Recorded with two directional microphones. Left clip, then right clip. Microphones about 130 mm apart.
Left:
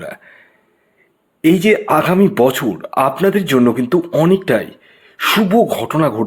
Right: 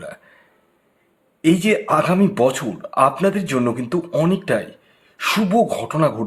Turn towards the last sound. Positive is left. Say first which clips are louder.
# left 4 dB
turn(degrees=40)  # may be behind; listen again after turning